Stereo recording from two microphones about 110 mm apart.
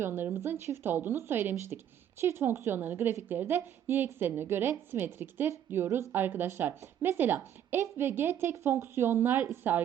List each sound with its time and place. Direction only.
0.0 s a woman's voice: 20° right (ahead or behind)